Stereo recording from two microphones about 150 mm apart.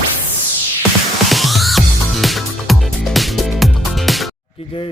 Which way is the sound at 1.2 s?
Centre (ahead or behind).